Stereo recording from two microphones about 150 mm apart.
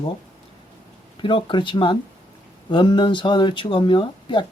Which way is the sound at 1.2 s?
35° left (ahead or behind).